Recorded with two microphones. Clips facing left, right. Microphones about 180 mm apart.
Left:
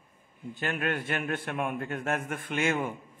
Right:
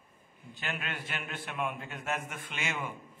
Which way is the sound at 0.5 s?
50° left (ahead or behind).